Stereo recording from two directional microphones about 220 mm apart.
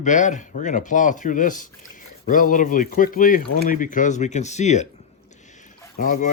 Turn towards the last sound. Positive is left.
turn(degrees=35)  # may be behind; listen again after turning